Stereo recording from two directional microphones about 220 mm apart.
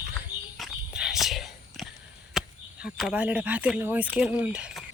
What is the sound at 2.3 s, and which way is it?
Speech, 5° right (ahead or behind).